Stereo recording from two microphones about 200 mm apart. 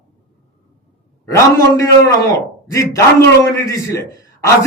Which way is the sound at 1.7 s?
20° left (ahead or behind).